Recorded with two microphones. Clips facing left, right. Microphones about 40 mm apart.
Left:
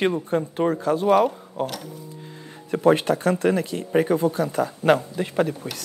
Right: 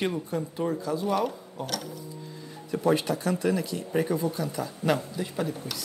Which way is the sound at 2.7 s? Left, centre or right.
Left.